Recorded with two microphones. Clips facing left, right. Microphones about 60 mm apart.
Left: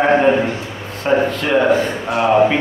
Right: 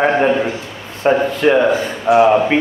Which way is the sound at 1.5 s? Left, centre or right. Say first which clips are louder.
Even; centre.